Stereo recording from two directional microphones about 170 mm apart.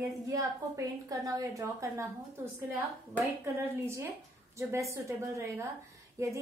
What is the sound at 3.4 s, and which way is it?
A woman's voice, 15° right (ahead or behind).